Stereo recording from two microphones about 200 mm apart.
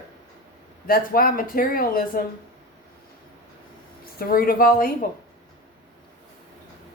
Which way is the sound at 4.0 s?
45° left (ahead or behind).